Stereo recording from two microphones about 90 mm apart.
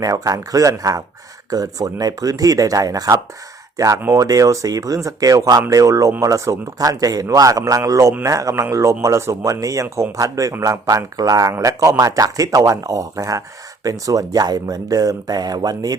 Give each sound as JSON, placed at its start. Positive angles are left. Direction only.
{"t": 0.0, "sound": "speech", "side_deg": -40}